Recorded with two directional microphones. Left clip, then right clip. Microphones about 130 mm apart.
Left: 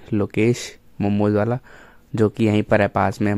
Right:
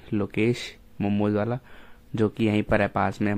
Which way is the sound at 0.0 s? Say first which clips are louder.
Left 5 dB; 40° left (ahead or behind).